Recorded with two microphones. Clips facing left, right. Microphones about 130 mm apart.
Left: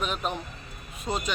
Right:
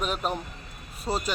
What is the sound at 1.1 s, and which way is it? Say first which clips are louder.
Speech: right 1 dB; 30° right (ahead or behind).